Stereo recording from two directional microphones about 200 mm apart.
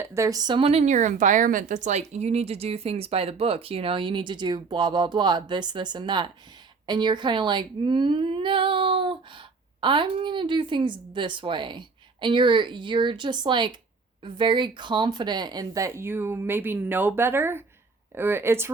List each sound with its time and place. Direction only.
0.0 s speech: 15° right (ahead or behind)